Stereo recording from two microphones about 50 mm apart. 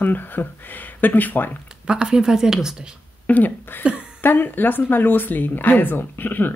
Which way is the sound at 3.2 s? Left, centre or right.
Left.